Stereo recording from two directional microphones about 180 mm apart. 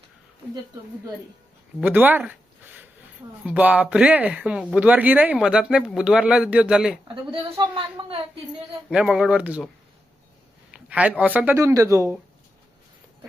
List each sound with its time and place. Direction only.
1.8 s speech: 10° right (ahead or behind)
8.9 s speech: 5° right (ahead or behind)
10.7 s speech: 5° right (ahead or behind)